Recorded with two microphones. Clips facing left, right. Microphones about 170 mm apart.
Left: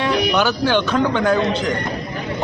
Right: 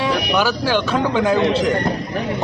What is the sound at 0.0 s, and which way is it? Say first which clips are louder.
Speech: left 1 dB; 5° right (ahead or behind).